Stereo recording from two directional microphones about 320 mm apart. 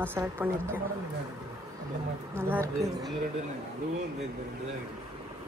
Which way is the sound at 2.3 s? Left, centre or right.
Centre.